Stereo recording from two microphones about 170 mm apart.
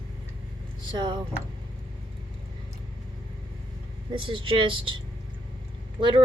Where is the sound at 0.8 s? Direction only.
25° right (ahead or behind).